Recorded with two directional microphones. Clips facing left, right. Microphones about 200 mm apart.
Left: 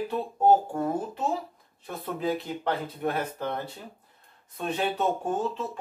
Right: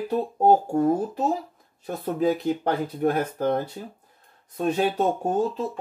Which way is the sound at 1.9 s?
45° right (ahead or behind).